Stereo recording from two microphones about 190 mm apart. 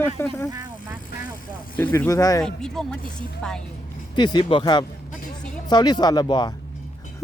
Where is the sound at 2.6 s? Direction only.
5° left (ahead or behind).